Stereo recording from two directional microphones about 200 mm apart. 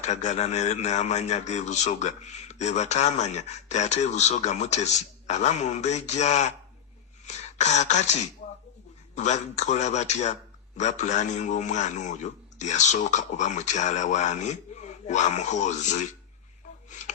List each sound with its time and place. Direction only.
0.0 s speech: 35° left (ahead or behind)